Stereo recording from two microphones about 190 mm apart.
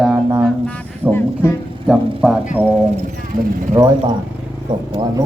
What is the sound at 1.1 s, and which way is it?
Speech, 10° left (ahead or behind).